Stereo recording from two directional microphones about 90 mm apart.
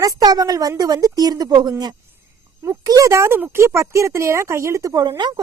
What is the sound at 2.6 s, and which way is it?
Speech, 40° right (ahead or behind).